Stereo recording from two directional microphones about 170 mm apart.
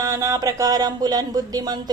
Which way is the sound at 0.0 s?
15° right (ahead or behind).